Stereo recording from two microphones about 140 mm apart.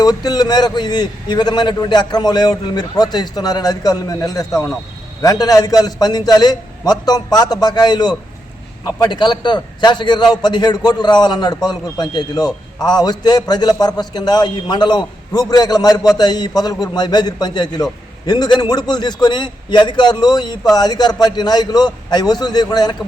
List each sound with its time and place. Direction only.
0.0 s a man's voice: 30° left (ahead or behind)